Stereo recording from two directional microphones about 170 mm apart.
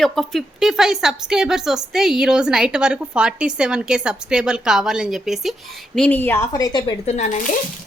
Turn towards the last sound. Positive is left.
turn(degrees=45)  # may be behind; listen again after turning